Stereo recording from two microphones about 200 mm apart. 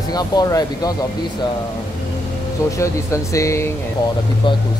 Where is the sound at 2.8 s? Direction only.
15° left (ahead or behind).